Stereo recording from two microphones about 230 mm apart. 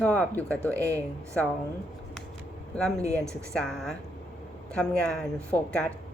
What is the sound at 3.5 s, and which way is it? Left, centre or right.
Speech, centre.